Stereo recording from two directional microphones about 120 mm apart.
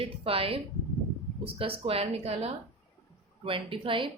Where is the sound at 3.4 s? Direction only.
50° right (ahead or behind).